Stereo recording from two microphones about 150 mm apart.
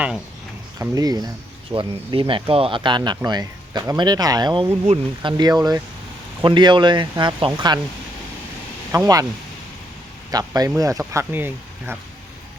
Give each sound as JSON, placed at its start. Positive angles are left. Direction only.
{"t": 0.8, "sound": "speech", "side_deg": -25}
{"t": 4.7, "sound": "speech", "side_deg": -40}
{"t": 5.4, "sound": "speech", "side_deg": -25}
{"t": 8.9, "sound": "speech", "side_deg": -20}
{"t": 10.3, "sound": "speech", "side_deg": -25}